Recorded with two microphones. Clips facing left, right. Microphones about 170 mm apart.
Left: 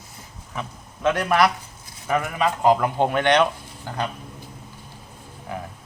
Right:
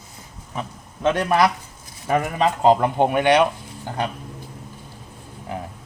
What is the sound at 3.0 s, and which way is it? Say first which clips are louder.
Speech: right 2 dB; 10° right (ahead or behind).